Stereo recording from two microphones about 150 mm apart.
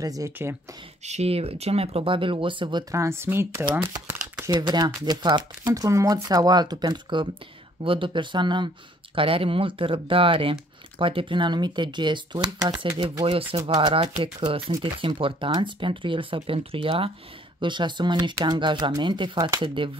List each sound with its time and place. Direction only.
0.0 s speech: 20° right (ahead or behind)
1.0 s speech: 45° right (ahead or behind)
2.9 s speech: 20° right (ahead or behind)
4.5 s speech: 30° right (ahead or behind)